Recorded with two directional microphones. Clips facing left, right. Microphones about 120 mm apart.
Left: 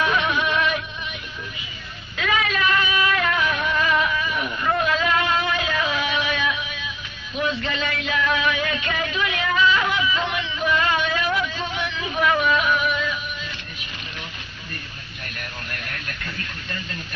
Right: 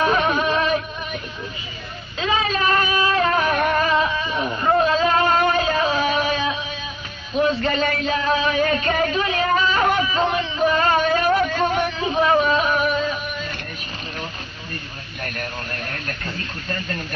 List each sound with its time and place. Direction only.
0.0 s music: 40° right (ahead or behind)
2.1 s child singing: 30° right (ahead or behind); by 3.9 s 45° right (ahead or behind)
3.9 s a sound: 30° right (ahead or behind)
7.3 s music: 40° right (ahead or behind)
12.1 s music: 30° right (ahead or behind)
15.2 s radio: 40° right (ahead or behind)